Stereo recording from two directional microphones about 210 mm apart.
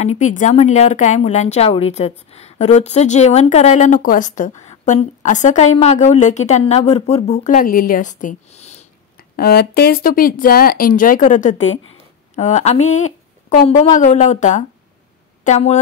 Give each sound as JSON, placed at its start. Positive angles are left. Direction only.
{"t": 0.2, "sound": "a woman's voice", "side_deg": 35}
{"t": 7.4, "sound": "a woman's voice", "side_deg": 40}
{"t": 9.4, "sound": "a woman's voice", "side_deg": 50}